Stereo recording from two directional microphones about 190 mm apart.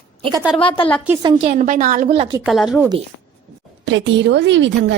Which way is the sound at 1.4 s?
40° right (ahead or behind).